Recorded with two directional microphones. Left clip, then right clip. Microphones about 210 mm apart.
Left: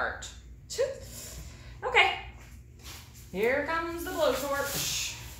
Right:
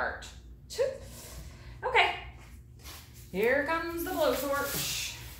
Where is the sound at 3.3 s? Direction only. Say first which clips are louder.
Even; 15° right (ahead or behind).